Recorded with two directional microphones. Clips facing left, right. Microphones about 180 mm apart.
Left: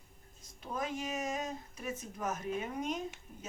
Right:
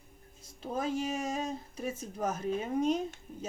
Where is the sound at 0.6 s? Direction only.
30° right (ahead or behind).